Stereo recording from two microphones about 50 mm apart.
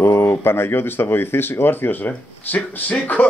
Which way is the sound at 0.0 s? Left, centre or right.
Left.